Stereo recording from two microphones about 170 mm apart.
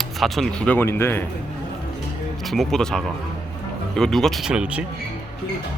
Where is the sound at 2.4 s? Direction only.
Centre (ahead or behind).